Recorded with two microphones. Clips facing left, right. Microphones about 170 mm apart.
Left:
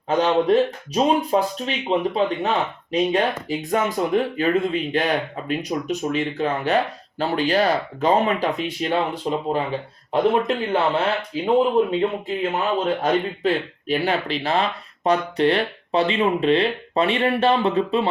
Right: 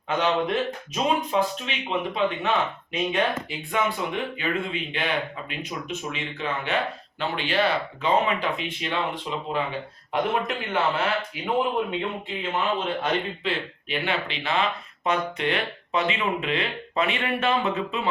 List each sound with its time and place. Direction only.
0.1 s speech: 35° left (ahead or behind)
10.1 s speech: 30° left (ahead or behind)